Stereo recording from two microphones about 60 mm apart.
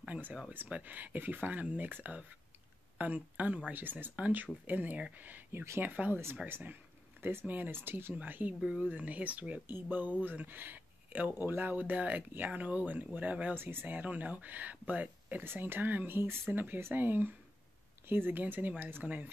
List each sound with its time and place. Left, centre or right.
0.0 s a sound: right
0.5 s speech: right
5.5 s speech: right
8.2 s speech: right
9.7 s speech: right
13.6 s speech: right
15.4 s speech: right